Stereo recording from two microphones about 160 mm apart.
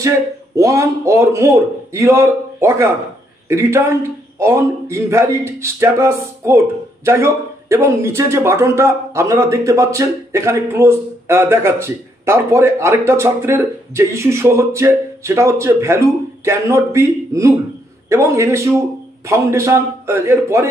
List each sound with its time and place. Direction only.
0.6 s a man's voice: 20° right (ahead or behind)